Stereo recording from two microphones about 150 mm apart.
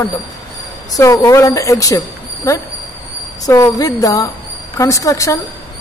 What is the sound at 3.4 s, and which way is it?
Speech, 25° left (ahead or behind).